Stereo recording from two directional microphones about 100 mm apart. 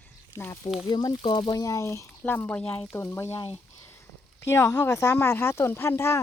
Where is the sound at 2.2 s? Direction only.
15° left (ahead or behind).